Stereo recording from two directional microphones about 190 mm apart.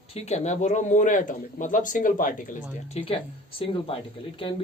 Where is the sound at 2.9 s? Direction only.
30° left (ahead or behind).